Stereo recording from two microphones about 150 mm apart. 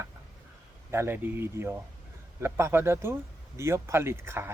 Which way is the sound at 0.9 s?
15° right (ahead or behind).